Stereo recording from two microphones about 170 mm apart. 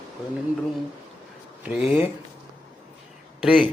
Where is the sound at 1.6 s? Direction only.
5° right (ahead or behind).